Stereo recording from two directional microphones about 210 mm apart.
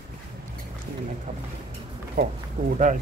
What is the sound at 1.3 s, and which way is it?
Speech, 35° right (ahead or behind).